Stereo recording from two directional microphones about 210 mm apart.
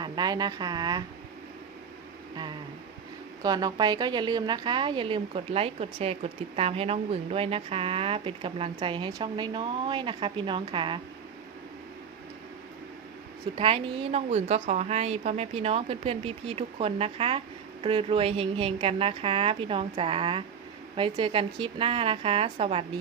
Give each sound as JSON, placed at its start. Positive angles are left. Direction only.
{"t": 0.0, "sound": "a woman's voice", "side_deg": -20}
{"t": 2.3, "sound": "a woman's voice", "side_deg": -20}
{"t": 13.6, "sound": "a woman's voice", "side_deg": -25}